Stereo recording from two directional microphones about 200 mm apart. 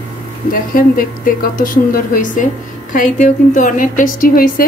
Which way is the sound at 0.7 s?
45° left (ahead or behind).